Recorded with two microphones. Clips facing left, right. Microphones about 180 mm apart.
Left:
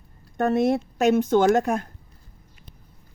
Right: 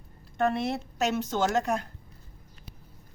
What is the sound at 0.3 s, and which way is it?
Speech, 45° left (ahead or behind).